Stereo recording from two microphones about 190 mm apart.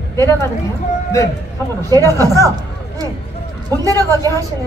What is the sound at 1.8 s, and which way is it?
Speech, 15° right (ahead or behind).